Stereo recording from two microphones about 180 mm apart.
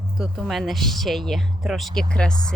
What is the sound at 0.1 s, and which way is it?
Speech, centre (ahead or behind).